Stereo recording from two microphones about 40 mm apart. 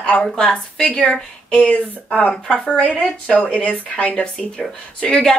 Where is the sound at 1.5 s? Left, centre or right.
Left.